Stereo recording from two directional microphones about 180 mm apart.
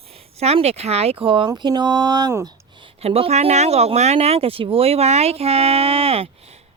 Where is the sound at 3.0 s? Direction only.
35° right (ahead or behind).